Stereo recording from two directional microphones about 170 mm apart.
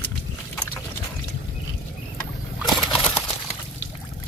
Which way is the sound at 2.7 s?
5° left (ahead or behind).